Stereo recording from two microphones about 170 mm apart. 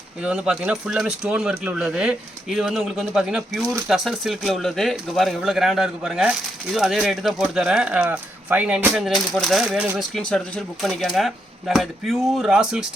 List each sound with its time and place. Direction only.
0.2 s speech: 5° right (ahead or behind)
10.0 s speech: 5° left (ahead or behind)